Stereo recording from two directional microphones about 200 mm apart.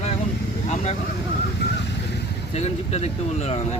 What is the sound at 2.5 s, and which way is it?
Speech, 30° left (ahead or behind).